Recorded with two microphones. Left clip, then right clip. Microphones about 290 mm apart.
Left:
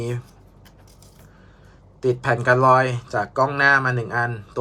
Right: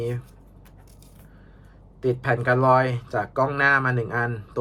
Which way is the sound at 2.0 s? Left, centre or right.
Centre.